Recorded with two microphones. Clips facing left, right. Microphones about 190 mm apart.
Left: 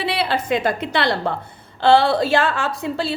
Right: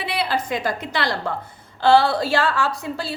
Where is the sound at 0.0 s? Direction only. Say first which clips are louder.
Left 2 dB; 30° left (ahead or behind).